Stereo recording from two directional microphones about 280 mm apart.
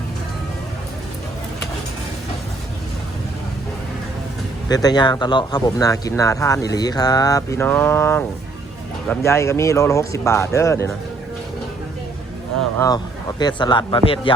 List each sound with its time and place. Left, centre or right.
4.7 s speech: centre
13.6 s speech: centre